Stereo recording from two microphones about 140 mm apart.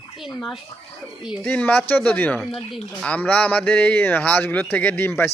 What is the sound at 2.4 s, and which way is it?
Speech, centre (ahead or behind).